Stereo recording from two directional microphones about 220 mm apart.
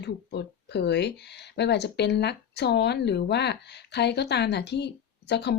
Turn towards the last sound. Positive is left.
turn(degrees=50)  # may be behind; listen again after turning